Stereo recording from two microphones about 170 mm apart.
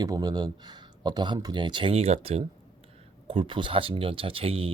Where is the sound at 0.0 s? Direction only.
25° right (ahead or behind).